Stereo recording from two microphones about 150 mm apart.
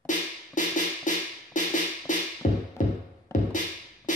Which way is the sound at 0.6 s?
60° left (ahead or behind).